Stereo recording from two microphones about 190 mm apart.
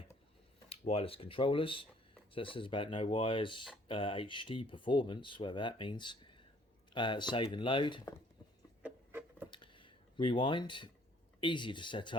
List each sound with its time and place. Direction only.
0.7 s speech: 30° left (ahead or behind)
8.8 s music: 10° right (ahead or behind)
9.5 s a sound: 25° left (ahead or behind)
11.3 s speech: 25° left (ahead or behind)